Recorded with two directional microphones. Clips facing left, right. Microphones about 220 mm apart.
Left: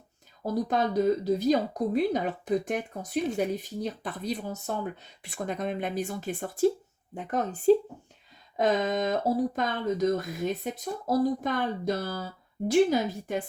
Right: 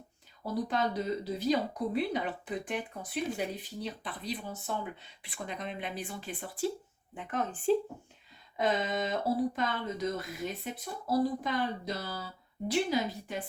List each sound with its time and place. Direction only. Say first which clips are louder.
0.4 s speech: left 4 dB; 45° left (ahead or behind)